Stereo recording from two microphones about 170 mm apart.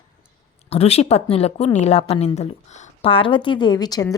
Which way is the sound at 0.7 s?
35° left (ahead or behind).